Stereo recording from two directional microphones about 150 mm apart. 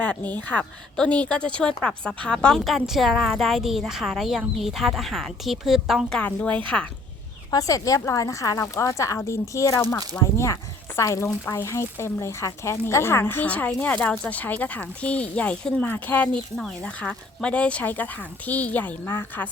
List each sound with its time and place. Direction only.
0.0 s a woman's voice: 10° left (ahead or behind)
7.5 s a woman's voice: 20° left (ahead or behind)